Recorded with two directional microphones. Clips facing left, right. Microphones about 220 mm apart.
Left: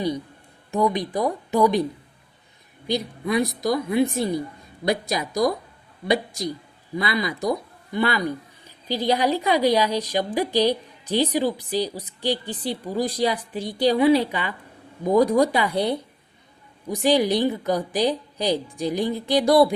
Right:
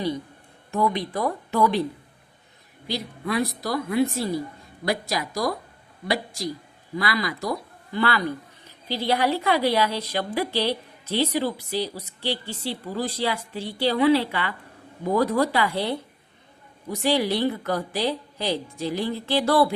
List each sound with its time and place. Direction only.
0.7 s a woman's voice: 15° left (ahead or behind)
2.8 s a woman's voice: 20° left (ahead or behind)